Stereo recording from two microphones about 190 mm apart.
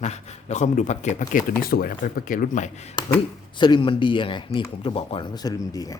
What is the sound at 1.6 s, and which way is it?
Speech, 50° left (ahead or behind).